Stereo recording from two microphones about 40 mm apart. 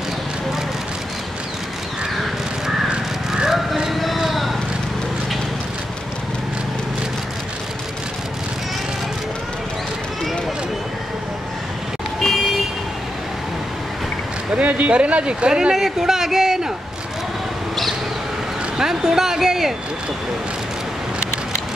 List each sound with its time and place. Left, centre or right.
3.4 s vehicle: centre
14.5 s speech: right
15.7 s speech: centre
18.8 s a man's voice: centre